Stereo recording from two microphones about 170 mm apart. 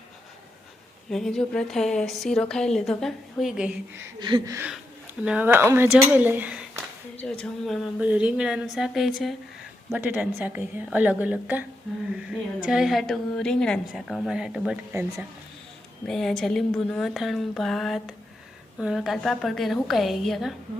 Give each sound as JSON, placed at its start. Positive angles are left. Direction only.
{"t": 1.1, "sound": "a woman's voice", "side_deg": 5}
{"t": 4.2, "sound": "a sound", "side_deg": -25}
{"t": 5.2, "sound": "a woman's voice", "side_deg": -10}
{"t": 7.2, "sound": "a woman's voice", "side_deg": 5}
{"t": 7.9, "sound": "a woman's voice", "side_deg": -5}